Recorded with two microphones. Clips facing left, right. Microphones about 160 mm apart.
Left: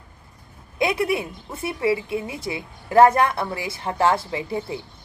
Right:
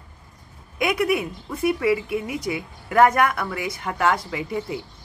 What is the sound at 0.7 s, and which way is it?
A woman's voice, 30° left (ahead or behind).